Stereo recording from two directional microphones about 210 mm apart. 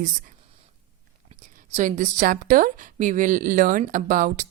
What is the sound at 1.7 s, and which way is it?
A woman's voice, 35° right (ahead or behind).